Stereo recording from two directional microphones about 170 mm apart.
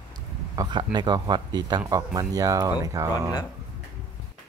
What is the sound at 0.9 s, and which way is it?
Speech, 25° right (ahead or behind).